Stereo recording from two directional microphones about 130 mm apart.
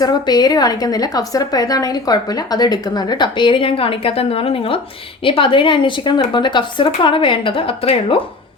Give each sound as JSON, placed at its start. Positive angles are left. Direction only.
{"t": 0.0, "sound": "a woman's voice", "side_deg": 30}